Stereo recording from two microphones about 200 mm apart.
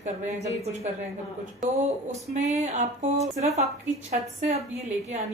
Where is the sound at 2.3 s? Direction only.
35° right (ahead or behind).